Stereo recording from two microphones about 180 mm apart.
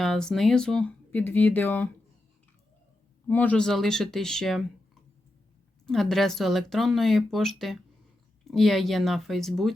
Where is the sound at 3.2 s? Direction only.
10° left (ahead or behind).